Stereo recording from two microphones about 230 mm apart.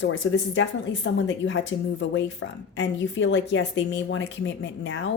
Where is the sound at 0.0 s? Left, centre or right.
Left.